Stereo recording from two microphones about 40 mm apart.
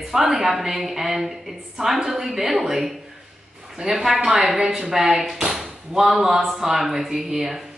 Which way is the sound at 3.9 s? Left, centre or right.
Centre.